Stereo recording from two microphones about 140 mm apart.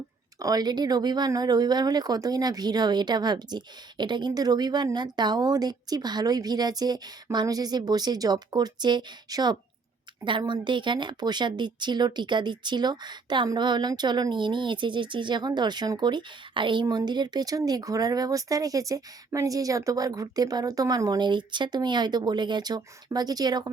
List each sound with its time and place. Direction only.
0.3 s a woman's voice: 25° right (ahead or behind)